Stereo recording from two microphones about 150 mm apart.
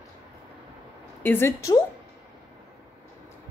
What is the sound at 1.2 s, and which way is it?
Speech, 15° left (ahead or behind).